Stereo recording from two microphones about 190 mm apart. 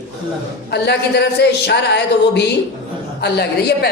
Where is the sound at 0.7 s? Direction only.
65° left (ahead or behind).